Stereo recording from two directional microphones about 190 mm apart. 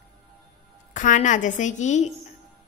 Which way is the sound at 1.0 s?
40° left (ahead or behind).